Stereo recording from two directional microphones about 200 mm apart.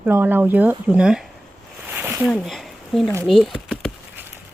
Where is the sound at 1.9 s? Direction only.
10° right (ahead or behind).